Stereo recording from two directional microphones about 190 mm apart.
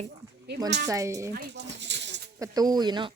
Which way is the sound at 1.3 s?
60° right (ahead or behind).